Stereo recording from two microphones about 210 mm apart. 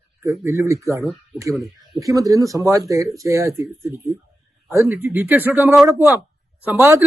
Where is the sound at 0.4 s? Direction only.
15° right (ahead or behind).